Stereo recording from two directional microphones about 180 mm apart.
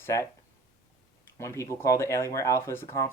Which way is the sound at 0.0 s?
15° left (ahead or behind).